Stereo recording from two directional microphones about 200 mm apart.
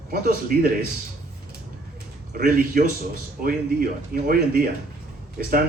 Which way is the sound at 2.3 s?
45° right (ahead or behind).